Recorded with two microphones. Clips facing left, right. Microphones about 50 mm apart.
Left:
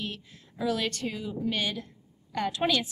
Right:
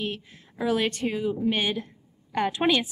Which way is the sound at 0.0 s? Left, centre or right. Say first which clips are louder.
Right 5 dB; right.